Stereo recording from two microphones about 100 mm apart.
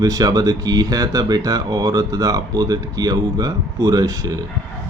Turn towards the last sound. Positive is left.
turn(degrees=-35)  # may be behind; listen again after turning